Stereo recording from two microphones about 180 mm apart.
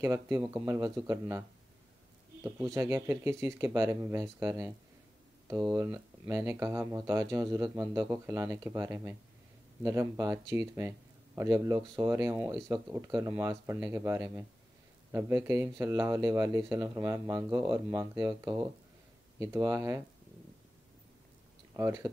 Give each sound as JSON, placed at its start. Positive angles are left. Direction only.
{"t": 0.0, "sound": "speech", "side_deg": -15}
{"t": 2.4, "sound": "speech", "side_deg": -15}
{"t": 5.8, "sound": "speech", "side_deg": -20}
{"t": 21.7, "sound": "speech", "side_deg": -15}